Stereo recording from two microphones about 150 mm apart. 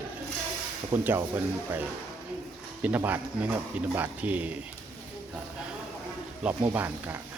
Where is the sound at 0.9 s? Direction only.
15° right (ahead or behind).